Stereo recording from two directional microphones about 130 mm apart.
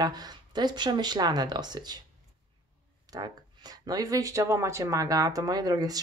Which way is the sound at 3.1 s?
30° right (ahead or behind).